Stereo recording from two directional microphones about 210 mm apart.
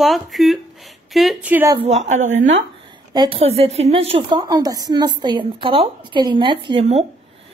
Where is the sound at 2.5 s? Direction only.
20° right (ahead or behind).